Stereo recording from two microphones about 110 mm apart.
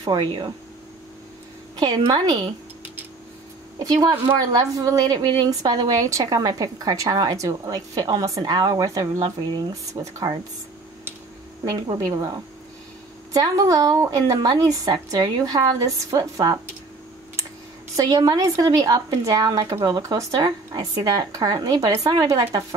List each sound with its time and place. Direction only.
0.2 s speech: 50° right (ahead or behind)
1.8 s speech: 40° right (ahead or behind)
3.8 s speech: 35° right (ahead or behind)
10.2 s speech: 40° right (ahead or behind)
11.7 s speech: 35° right (ahead or behind)
13.3 s speech: 35° right (ahead or behind)
17.9 s speech: 35° right (ahead or behind)
22.1 s speech: 45° right (ahead or behind)